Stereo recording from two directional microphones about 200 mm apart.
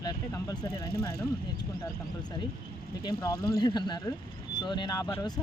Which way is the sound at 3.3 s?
50° left (ahead or behind).